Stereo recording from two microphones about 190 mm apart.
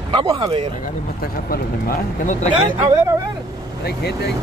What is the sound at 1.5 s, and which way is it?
Speech, 45° left (ahead or behind).